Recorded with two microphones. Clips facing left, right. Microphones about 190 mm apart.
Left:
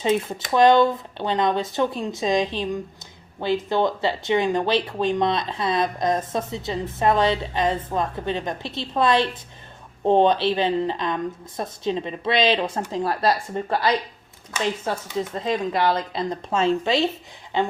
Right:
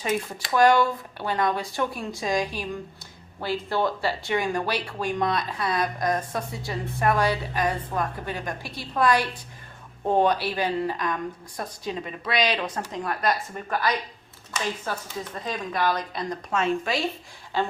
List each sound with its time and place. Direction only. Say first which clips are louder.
0.0 s speech: left 5 dB; 25° left (ahead or behind)
15.4 s speech: left 4 dB; 25° left (ahead or behind)